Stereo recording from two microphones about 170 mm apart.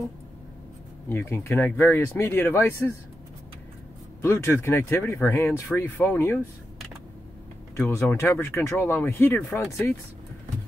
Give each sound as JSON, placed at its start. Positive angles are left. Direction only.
{"t": 1.0, "sound": "speech", "side_deg": 15}
{"t": 4.2, "sound": "speech", "side_deg": 15}
{"t": 7.7, "sound": "speech", "side_deg": 15}